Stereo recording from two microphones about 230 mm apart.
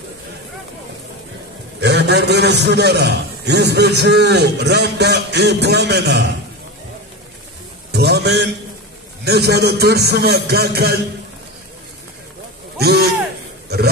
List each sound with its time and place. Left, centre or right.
1.8 s a man's voice: right
7.9 s a sound: right
9.2 s a man's voice: right
12.7 s speech: right